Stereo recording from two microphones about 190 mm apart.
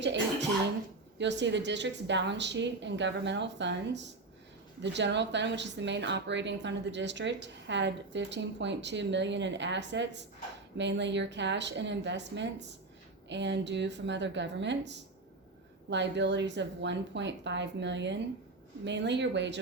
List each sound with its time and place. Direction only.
1.2 s speech: 70° right (ahead or behind)